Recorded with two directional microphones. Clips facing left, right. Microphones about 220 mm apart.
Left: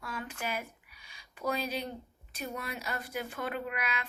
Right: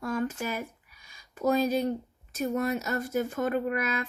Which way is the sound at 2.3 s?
45° right (ahead or behind).